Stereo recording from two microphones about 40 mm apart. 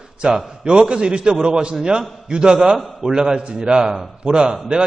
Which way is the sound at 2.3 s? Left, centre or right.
Right.